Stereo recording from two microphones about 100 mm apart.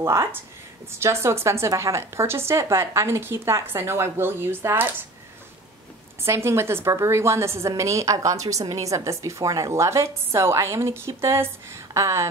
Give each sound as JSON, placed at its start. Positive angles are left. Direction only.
{"t": 0.0, "sound": "a woman's voice", "side_deg": -25}
{"t": 6.2, "sound": "a woman's voice", "side_deg": -25}